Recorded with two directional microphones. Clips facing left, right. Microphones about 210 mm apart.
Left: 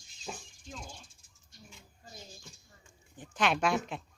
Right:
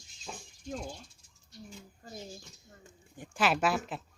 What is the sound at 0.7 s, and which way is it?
Speech, 50° right (ahead or behind).